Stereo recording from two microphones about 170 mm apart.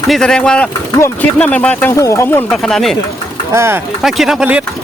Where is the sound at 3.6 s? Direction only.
15° right (ahead or behind).